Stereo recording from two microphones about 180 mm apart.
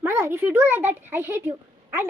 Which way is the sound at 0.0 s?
15° right (ahead or behind).